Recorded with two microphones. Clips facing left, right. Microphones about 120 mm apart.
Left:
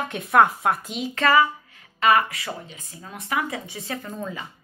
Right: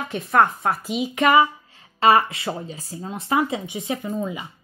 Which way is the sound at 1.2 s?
20° right (ahead or behind).